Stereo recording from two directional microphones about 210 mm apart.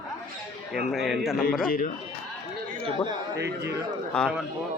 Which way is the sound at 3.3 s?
55° right (ahead or behind).